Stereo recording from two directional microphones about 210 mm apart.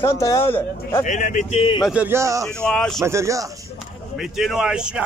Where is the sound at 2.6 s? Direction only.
5° left (ahead or behind).